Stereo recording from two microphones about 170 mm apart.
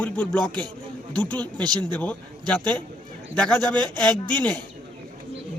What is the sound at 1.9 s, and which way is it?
Speech, 10° left (ahead or behind).